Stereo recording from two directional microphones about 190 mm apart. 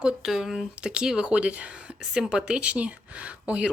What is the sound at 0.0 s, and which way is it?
Speech, 5° right (ahead or behind).